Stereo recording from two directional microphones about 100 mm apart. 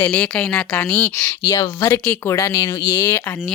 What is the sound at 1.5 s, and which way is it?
A woman's voice, 30° left (ahead or behind).